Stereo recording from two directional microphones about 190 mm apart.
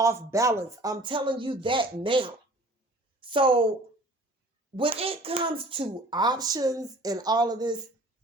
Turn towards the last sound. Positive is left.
turn(degrees=-20)  # may be behind; listen again after turning